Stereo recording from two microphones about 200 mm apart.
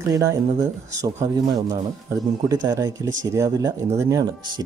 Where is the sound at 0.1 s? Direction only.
15° right (ahead or behind).